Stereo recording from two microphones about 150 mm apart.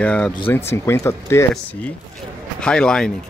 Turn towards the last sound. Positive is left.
turn(degrees=5)  # may be behind; listen again after turning